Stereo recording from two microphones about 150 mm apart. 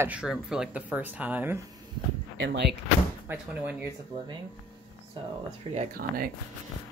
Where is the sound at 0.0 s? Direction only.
5° right (ahead or behind).